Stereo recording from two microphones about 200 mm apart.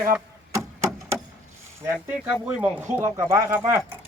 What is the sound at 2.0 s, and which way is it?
Speech, 5° right (ahead or behind).